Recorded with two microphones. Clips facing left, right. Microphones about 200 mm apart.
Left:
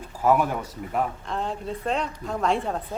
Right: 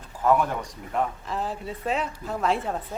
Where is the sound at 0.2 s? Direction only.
5° left (ahead or behind).